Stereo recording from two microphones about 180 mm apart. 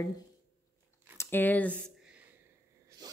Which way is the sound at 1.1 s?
15° left (ahead or behind).